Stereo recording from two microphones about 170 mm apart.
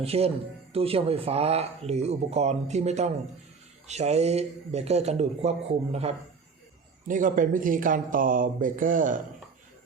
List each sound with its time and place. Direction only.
0.0 s speech: 35° right (ahead or behind)
7.1 s speech: 50° right (ahead or behind)